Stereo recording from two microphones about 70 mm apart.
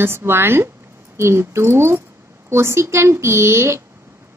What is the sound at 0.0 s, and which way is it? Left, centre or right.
A woman's voice, right.